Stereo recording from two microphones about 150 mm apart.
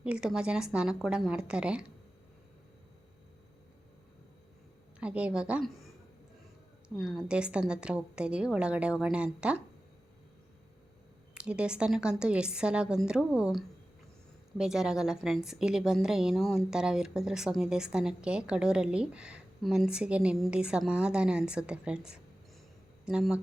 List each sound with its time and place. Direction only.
0.0 s a woman's voice: 5° right (ahead or behind)
4.9 s a woman's voice: 10° right (ahead or behind)
6.8 s a woman's voice: 5° right (ahead or behind)
11.3 s a woman's voice: 5° right (ahead or behind)